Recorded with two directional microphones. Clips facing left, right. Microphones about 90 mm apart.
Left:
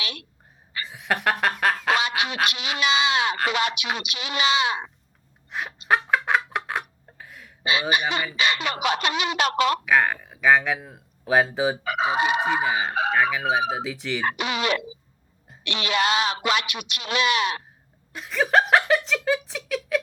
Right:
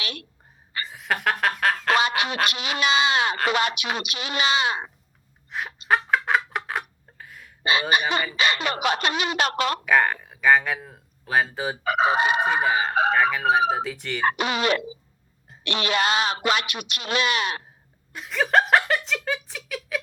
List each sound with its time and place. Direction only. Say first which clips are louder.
0.0 s a sound: right 1 dB; 45° right (ahead or behind)
0.9 s a sound: left 1 dB; centre (ahead or behind)
2.5 s speech: right 1 dB; 45° right (ahead or behind)
5.5 s a sound: even; centre (ahead or behind)
7.6 s a woman's voice: right 1 dB; 40° right (ahead or behind)
9.8 s speech: even; centre (ahead or behind)
11.8 s speech: right 2 dB; 45° right (ahead or behind)
12.6 s speech: right 2 dB; centre (ahead or behind)
12.9 s speech: right 3 dB; 40° right (ahead or behind)
13.1 s speech: even; centre (ahead or behind)
14.3 s speech: right 3 dB; 45° right (ahead or behind)
18.1 s speech: even; centre (ahead or behind)